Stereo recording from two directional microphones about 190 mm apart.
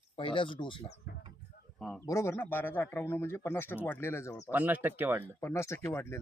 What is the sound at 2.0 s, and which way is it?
Speech, 15° left (ahead or behind).